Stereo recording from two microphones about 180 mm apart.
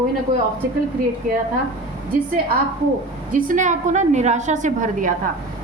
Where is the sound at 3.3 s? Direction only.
45° right (ahead or behind).